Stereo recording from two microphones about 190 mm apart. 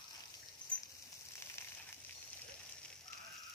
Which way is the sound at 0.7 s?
5° left (ahead or behind).